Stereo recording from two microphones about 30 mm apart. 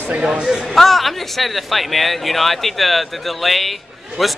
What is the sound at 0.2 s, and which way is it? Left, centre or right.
Speech, right.